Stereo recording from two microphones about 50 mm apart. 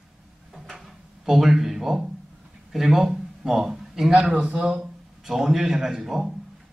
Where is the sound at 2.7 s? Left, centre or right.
Centre.